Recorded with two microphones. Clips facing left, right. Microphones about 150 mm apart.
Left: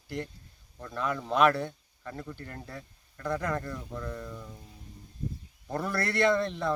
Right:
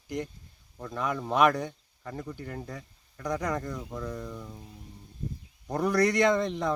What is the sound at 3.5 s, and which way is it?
Speech, 15° right (ahead or behind).